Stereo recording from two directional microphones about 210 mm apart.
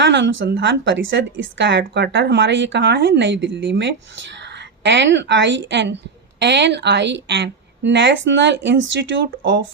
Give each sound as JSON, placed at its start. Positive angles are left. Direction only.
{"t": 0.0, "sound": "a woman's voice", "side_deg": -60}